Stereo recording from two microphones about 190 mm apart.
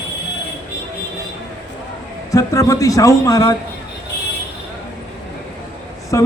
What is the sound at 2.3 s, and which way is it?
Speech, 15° left (ahead or behind).